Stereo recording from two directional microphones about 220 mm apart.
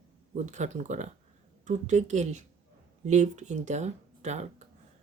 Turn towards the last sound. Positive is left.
turn(degrees=-30)  # may be behind; listen again after turning